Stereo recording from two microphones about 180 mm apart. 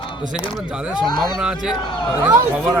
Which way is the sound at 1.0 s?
25° left (ahead or behind).